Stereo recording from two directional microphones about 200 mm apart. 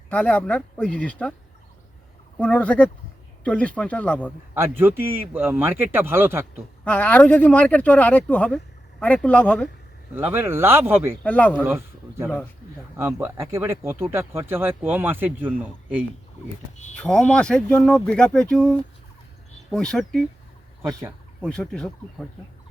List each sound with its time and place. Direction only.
0.1 s speech: 5° left (ahead or behind)
2.4 s speech: 5° left (ahead or behind)
4.5 s speech: 10° right (ahead or behind)
6.8 s speech: 5° left (ahead or behind)
10.2 s speech: 10° right (ahead or behind)
11.2 s speech: 5° left (ahead or behind)
11.6 s speech: 10° right (ahead or behind)
16.7 s speech: 35° left (ahead or behind)
17.0 s speech: 5° left (ahead or behind)
21.4 s speech: 5° left (ahead or behind)